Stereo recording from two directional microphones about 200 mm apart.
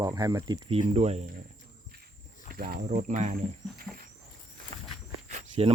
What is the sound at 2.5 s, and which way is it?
Speech, 50° right (ahead or behind).